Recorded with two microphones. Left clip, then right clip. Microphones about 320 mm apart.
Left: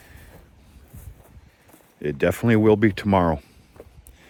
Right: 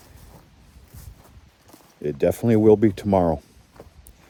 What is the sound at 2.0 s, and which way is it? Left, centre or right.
Speech, left.